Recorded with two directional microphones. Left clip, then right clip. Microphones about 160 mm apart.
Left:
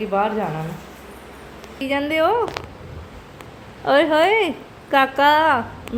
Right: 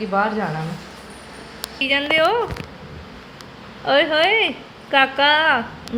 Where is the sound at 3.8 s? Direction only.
25° left (ahead or behind).